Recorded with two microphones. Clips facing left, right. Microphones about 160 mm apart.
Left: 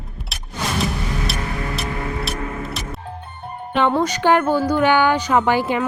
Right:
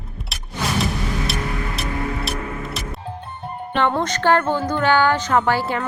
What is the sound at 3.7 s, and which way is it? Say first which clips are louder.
Speech: left 2 dB; 10° left (ahead or behind).